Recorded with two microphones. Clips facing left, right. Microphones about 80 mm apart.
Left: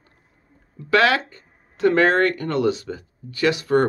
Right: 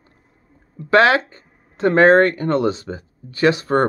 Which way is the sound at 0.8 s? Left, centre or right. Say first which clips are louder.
Right 4 dB; right.